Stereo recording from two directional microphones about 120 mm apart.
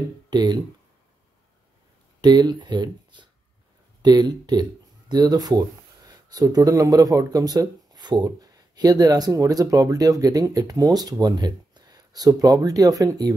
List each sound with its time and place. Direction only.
0.3 s speech: 35° right (ahead or behind)
2.2 s speech: 35° right (ahead or behind)